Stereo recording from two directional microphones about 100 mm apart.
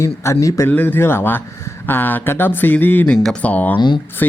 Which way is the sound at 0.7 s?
20° left (ahead or behind).